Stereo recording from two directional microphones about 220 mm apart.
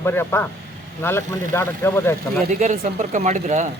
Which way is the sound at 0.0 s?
10° left (ahead or behind).